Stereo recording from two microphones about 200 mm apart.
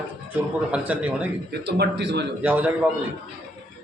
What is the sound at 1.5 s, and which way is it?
Speech, 60° right (ahead or behind).